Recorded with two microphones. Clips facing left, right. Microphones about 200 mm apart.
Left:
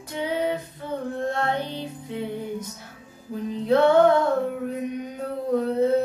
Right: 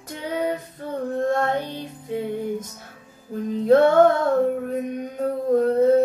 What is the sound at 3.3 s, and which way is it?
Music, 45° right (ahead or behind).